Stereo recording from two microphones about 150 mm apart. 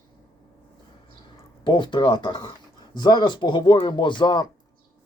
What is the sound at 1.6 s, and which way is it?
Speech, 30° left (ahead or behind).